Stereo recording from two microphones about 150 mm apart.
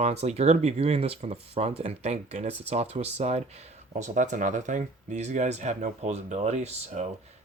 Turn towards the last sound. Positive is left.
turn(degrees=-50)  # may be behind; listen again after turning